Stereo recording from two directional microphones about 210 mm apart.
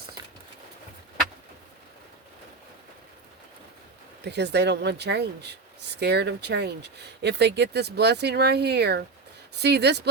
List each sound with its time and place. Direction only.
4.2 s speech: 55° right (ahead or behind)